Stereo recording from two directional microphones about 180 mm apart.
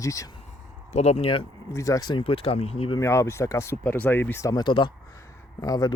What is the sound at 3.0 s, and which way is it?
Speech, 15° left (ahead or behind).